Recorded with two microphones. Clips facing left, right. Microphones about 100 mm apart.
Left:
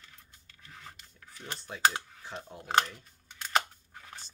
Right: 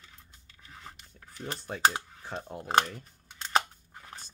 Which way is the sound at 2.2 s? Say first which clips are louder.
Right 4 dB; 40° right (ahead or behind).